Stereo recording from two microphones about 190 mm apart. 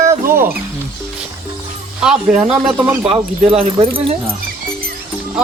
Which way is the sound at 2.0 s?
5° right (ahead or behind).